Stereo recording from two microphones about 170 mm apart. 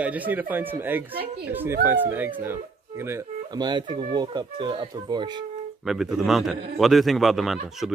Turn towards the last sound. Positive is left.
turn(degrees=0)  # may be behind; listen again after turning